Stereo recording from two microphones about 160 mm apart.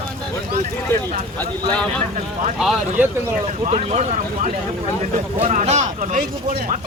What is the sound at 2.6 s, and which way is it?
Speech, 10° right (ahead or behind).